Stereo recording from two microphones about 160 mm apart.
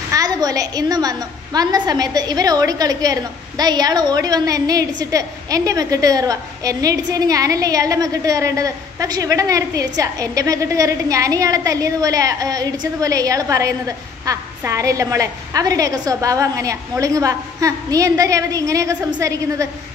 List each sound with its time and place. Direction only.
0.1 s a woman's voice: 25° right (ahead or behind)